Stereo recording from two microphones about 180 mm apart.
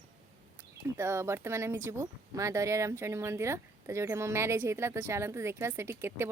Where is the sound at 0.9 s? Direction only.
15° right (ahead or behind).